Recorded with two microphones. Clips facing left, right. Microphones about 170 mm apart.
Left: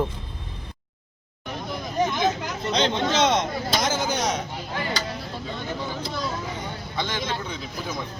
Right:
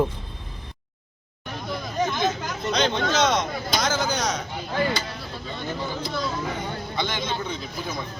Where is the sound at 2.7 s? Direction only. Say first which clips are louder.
Even; 25° left (ahead or behind).